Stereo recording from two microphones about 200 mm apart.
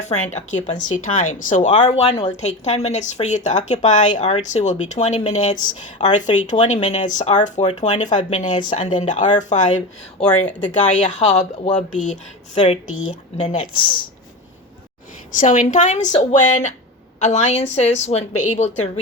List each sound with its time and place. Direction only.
0.0 s speech: 35° left (ahead or behind)
12.9 s speech: 90° left
13.3 s speech: 35° left (ahead or behind)
15.3 s speech: 40° left (ahead or behind)